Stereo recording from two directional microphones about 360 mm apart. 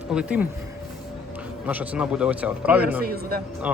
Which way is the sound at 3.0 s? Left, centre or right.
Right.